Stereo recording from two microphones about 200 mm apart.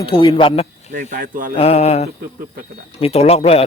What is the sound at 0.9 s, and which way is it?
Speech, 40° right (ahead or behind).